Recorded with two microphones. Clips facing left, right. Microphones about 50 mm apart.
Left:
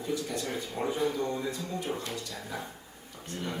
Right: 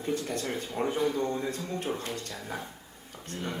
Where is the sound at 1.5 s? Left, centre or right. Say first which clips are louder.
Right 1 dB; right.